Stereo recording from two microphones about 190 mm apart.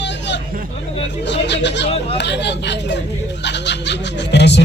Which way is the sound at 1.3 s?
65° left (ahead or behind).